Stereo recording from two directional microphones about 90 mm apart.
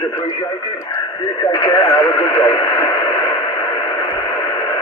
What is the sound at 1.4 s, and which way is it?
Radio, 40° left (ahead or behind).